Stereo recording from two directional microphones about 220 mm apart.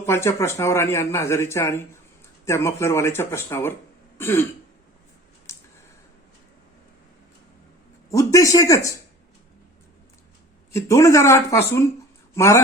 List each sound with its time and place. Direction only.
0.0 s speech: 10° left (ahead or behind)
8.1 s speech: 15° left (ahead or behind)
10.7 s speech: 15° left (ahead or behind)